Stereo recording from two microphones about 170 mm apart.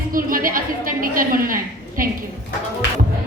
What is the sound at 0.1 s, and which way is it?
A woman's voice, 55° right (ahead or behind).